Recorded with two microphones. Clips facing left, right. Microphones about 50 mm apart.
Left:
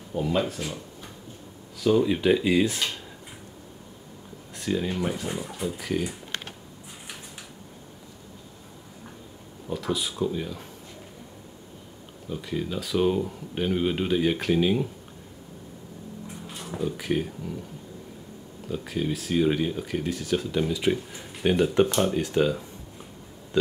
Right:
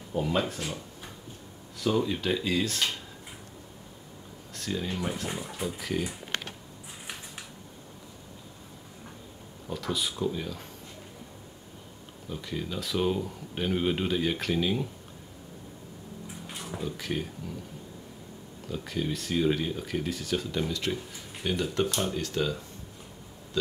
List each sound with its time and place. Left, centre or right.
0.1 s speech: centre
1.8 s speech: centre
2.0 s speech: centre
4.6 s speech: centre
5.6 s speech: centre
9.7 s speech: centre
12.3 s speech: centre
16.7 s speech: centre
18.7 s speech: centre
20.9 s speech: left
23.5 s a sound: left